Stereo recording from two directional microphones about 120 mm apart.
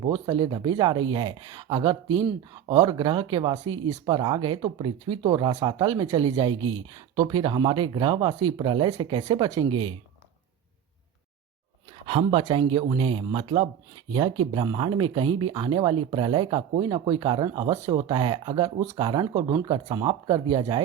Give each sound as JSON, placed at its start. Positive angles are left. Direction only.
{"t": 0.3, "sound": "speech", "side_deg": -40}
{"t": 12.0, "sound": "speech", "side_deg": -50}